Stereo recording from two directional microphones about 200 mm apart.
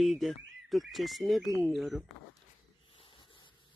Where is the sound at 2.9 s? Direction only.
25° left (ahead or behind).